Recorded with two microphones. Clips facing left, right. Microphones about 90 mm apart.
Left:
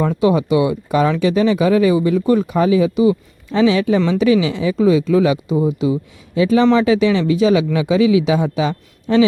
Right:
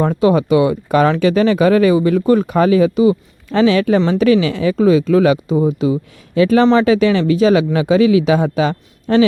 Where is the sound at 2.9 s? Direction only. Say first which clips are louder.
Right 2 dB; 35° right (ahead or behind).